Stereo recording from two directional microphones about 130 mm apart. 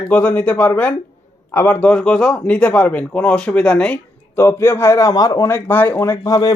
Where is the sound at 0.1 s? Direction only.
10° left (ahead or behind).